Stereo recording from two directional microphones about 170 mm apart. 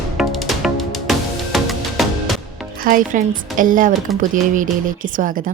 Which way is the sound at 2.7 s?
55° right (ahead or behind).